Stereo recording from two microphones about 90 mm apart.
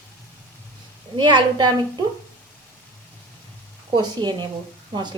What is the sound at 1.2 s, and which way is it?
Speech, 55° right (ahead or behind).